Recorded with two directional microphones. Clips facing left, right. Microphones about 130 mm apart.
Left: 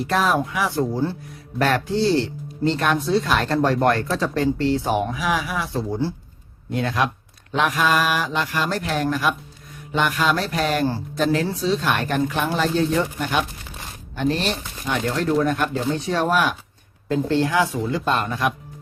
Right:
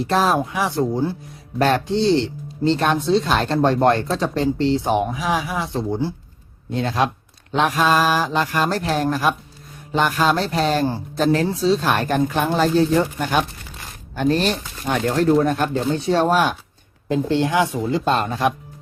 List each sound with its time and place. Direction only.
0.0 s speech: 30° right (ahead or behind)
14.2 s speech: 40° right (ahead or behind)
17.1 s speech: 20° right (ahead or behind)